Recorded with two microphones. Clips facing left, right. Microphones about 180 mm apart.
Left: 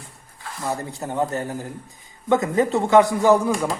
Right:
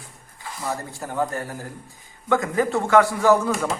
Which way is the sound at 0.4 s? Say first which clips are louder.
Left 2 dB; centre (ahead or behind).